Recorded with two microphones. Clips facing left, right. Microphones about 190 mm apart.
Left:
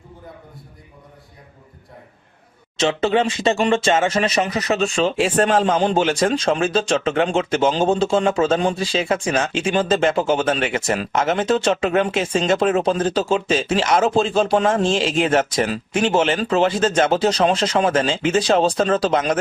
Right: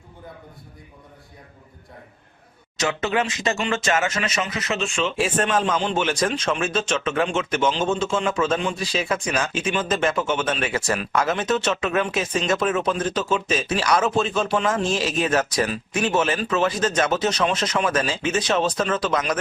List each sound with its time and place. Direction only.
2.7 s speech: 30° left (ahead or behind)